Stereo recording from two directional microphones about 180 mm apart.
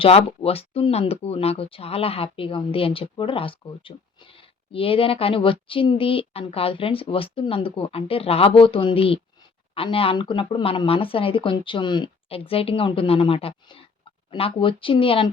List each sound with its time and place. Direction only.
0.0 s a woman's voice: 35° left (ahead or behind)